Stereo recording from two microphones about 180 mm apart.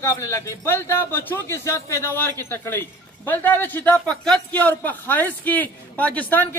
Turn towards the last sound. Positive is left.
turn(degrees=10)  # may be behind; listen again after turning